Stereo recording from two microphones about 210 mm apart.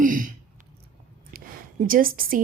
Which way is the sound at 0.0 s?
40° right (ahead or behind).